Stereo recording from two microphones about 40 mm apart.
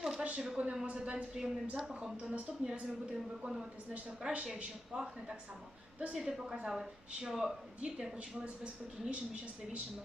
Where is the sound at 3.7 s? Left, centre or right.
Right.